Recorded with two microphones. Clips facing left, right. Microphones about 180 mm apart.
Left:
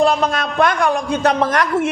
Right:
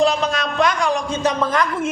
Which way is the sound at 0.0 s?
55° left (ahead or behind).